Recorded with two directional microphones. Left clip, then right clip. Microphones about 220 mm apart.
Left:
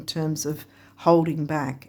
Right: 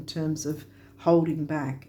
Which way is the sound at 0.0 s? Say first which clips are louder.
Left 3 dB; 30° left (ahead or behind).